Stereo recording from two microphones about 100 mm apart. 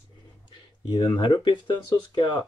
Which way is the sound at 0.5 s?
50° left (ahead or behind).